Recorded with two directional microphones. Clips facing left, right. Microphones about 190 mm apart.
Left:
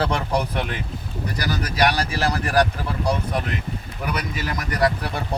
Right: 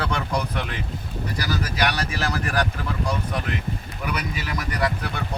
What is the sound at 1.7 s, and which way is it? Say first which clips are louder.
Speech: left 7 dB; 35° left (ahead or behind).